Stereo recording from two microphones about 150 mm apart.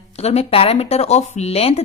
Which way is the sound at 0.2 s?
45° left (ahead or behind).